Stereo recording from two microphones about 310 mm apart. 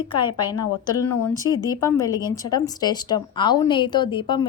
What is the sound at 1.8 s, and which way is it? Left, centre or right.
A woman's voice, centre.